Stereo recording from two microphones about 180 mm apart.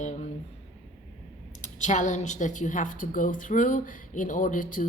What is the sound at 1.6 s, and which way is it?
A woman's voice, 40° left (ahead or behind).